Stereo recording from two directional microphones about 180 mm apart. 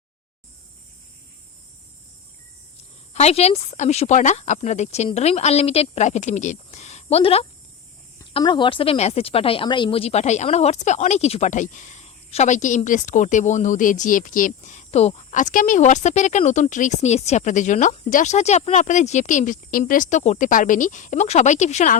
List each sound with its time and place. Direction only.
3.1 s speech: 35° left (ahead or behind)